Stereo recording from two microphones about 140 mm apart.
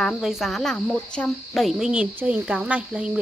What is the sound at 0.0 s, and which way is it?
Speech, centre (ahead or behind).